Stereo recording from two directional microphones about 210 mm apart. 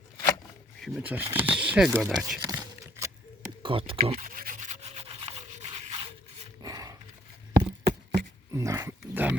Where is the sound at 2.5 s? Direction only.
15° right (ahead or behind).